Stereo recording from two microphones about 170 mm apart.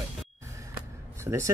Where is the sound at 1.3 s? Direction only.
15° right (ahead or behind).